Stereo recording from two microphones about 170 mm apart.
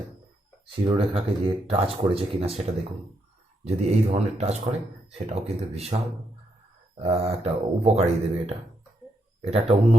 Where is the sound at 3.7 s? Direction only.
40° right (ahead or behind).